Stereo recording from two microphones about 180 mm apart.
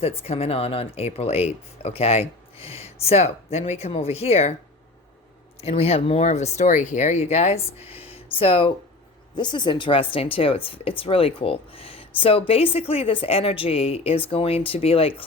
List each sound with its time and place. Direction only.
0.0 s a woman's voice: 35° left (ahead or behind)
5.5 s a woman's voice: 35° left (ahead or behind)